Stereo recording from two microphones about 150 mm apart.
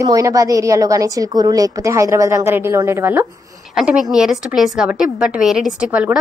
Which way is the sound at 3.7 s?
5° right (ahead or behind).